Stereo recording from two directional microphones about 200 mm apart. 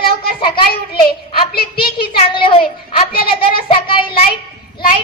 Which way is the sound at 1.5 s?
50° left (ahead or behind).